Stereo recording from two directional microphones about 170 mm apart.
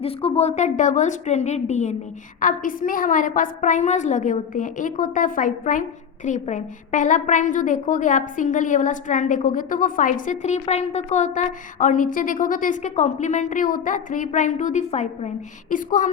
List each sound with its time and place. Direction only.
0.0 s a woman's voice: 35° left (ahead or behind); by 16.0 s 50° left (ahead or behind)